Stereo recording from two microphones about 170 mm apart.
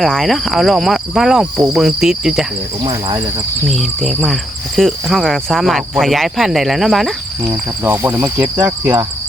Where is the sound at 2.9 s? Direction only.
25° right (ahead or behind).